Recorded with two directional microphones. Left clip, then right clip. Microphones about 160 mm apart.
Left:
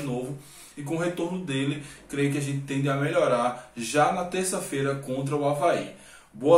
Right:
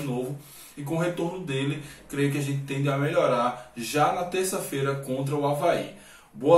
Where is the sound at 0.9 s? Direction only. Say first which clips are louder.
Right 1 dB; 10° left (ahead or behind).